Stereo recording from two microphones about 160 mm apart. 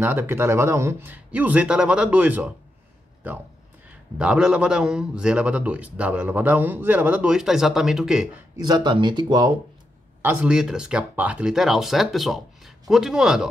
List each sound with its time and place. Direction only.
0.0 s a man's voice: 15° right (ahead or behind)
4.2 s a man's voice: 5° right (ahead or behind)
8.5 s speech: 25° right (ahead or behind)
10.2 s speech: 5° right (ahead or behind)